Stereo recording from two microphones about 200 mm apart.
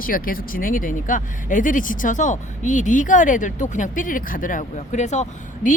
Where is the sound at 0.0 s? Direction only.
45° left (ahead or behind).